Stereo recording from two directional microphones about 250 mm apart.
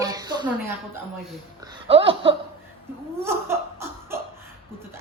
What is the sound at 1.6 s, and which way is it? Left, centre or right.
Speech, right.